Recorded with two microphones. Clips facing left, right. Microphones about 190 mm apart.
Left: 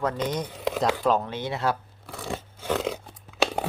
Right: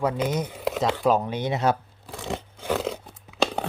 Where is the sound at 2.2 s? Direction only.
20° right (ahead or behind).